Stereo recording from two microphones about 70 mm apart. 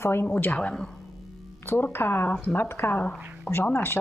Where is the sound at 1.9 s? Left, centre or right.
Left.